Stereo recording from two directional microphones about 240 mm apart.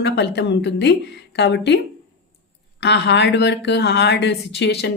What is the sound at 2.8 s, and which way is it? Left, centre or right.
A woman's voice, left.